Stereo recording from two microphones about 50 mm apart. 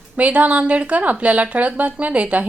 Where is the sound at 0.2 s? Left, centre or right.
Right.